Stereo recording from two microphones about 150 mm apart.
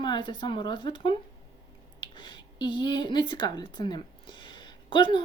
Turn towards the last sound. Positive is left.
turn(degrees=35)  # may be behind; listen again after turning